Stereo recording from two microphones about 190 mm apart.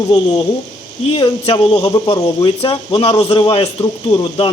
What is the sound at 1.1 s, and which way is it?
Speech, 25° left (ahead or behind).